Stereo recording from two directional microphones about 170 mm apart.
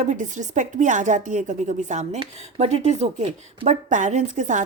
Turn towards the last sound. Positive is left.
turn(degrees=-45)  # may be behind; listen again after turning